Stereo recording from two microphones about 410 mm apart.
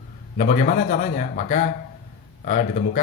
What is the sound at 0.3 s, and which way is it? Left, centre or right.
Speech, centre.